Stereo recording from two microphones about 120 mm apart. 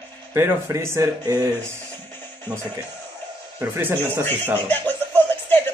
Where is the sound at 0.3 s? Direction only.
20° right (ahead or behind).